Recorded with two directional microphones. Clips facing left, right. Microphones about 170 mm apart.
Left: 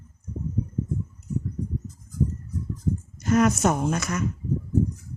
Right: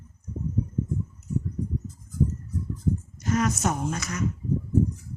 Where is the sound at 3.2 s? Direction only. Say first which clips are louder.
Left 7 dB; 55° left (ahead or behind).